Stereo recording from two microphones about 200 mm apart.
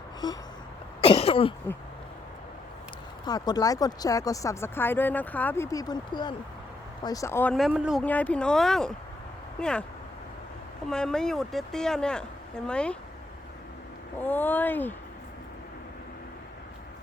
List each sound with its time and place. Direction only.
1.0 s cough: 30° left (ahead or behind)
3.2 s speech: 20° left (ahead or behind); by 8.0 s 5° right (ahead or behind)
8.0 s speech: 5° left (ahead or behind)
10.8 s speech: 5° left (ahead or behind)
14.2 s speech: 10° left (ahead or behind)